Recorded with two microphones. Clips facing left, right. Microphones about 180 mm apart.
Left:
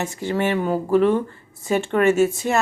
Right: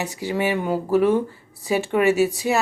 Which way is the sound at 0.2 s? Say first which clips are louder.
Left 1 dB; 10° right (ahead or behind).